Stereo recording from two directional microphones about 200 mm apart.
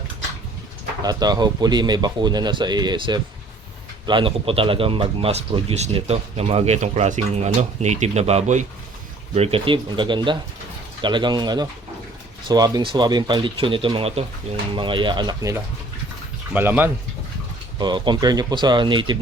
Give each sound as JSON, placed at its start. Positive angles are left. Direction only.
{"t": 1.0, "sound": "speech", "side_deg": -20}
{"t": 17.7, "sound": "speech", "side_deg": -20}